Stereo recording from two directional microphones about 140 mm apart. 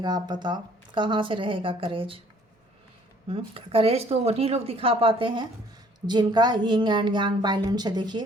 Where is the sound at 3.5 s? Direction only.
40° right (ahead or behind).